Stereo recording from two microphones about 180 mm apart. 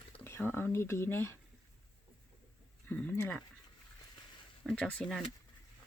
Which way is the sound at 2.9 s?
10° left (ahead or behind).